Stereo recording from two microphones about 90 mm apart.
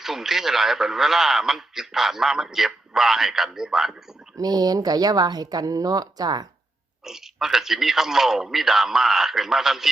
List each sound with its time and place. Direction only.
0.0 s a man's voice: 5° right (ahead or behind)
4.4 s speech: 45° right (ahead or behind)
7.0 s a man's voice: 5° right (ahead or behind)